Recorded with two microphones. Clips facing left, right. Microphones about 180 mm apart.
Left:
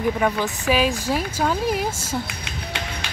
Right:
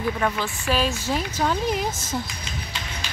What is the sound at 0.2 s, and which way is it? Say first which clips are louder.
Speech: left 3 dB; 10° left (ahead or behind).